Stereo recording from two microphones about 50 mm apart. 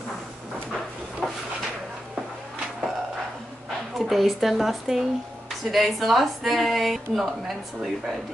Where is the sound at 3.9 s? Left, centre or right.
Centre.